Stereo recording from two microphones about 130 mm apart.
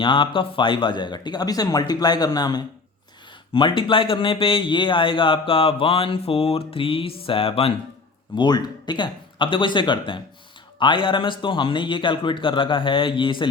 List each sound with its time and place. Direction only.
0.0 s a man's voice: 40° left (ahead or behind)
8.4 s a man's voice: 35° left (ahead or behind)